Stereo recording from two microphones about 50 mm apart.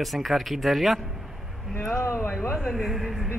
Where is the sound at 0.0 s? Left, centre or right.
Centre.